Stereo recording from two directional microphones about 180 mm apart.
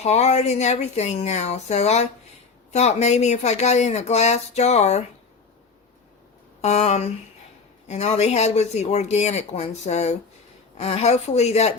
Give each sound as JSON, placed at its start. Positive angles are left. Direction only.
{"t": 0.0, "sound": "speech", "side_deg": 40}
{"t": 6.6, "sound": "speech", "side_deg": 40}